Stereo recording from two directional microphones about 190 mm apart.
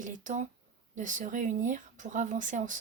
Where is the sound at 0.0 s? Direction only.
40° right (ahead or behind).